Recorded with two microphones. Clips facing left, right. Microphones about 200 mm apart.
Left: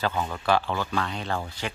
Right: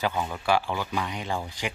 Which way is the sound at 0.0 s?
10° right (ahead or behind).